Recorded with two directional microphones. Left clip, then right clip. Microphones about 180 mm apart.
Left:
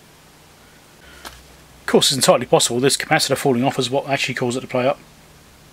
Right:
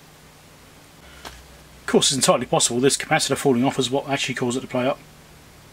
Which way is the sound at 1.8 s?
15° left (ahead or behind).